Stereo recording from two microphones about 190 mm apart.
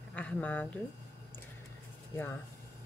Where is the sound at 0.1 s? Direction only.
5° left (ahead or behind).